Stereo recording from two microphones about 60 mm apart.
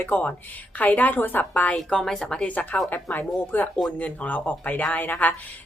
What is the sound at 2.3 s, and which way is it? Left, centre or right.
Speech, left.